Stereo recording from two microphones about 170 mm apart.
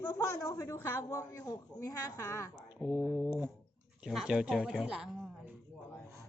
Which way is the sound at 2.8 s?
Centre (ahead or behind).